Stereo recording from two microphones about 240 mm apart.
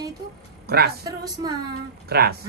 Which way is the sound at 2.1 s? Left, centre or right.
Right.